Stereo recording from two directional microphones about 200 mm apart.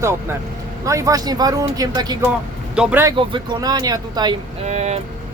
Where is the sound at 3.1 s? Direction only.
20° right (ahead or behind).